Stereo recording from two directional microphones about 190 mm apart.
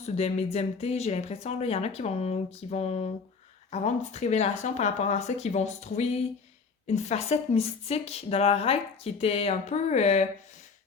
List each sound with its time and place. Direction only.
0.0 s speech: 35° left (ahead or behind)